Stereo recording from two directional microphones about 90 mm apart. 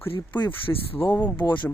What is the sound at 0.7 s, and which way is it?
Speech, 30° left (ahead or behind).